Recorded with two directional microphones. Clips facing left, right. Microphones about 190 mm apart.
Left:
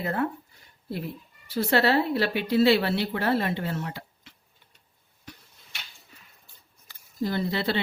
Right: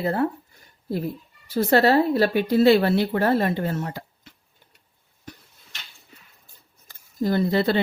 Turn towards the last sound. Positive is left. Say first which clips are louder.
# right 6 dB
turn(degrees=-45)  # may be behind; listen again after turning